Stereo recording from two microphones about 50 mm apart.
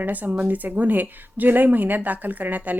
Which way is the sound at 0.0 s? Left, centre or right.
Right.